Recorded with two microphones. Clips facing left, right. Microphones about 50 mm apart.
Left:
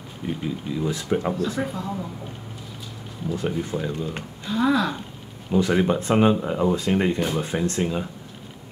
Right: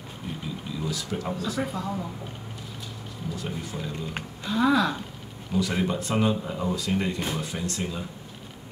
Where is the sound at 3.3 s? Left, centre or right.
Left.